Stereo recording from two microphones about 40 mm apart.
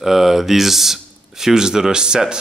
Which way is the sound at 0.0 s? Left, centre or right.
Centre.